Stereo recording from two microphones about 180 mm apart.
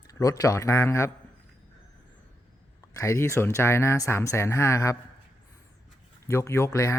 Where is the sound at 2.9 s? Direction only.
15° left (ahead or behind).